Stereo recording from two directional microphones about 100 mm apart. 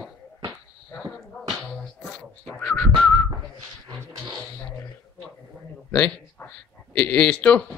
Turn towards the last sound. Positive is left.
turn(degrees=10)  # may be behind; listen again after turning